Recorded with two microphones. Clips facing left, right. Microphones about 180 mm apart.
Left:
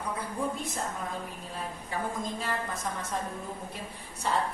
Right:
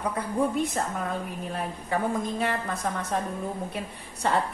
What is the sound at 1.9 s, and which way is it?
A woman's voice, 60° right (ahead or behind).